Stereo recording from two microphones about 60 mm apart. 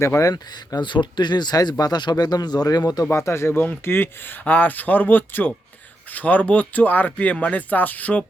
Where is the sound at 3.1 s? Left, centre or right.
Left.